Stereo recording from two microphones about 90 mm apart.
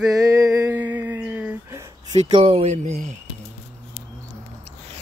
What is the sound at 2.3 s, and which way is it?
Speech, 90° right.